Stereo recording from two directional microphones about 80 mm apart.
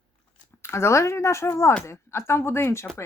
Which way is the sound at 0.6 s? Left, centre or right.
Left.